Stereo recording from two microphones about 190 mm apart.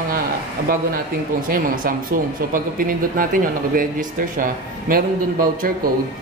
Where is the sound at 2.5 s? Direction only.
45° right (ahead or behind).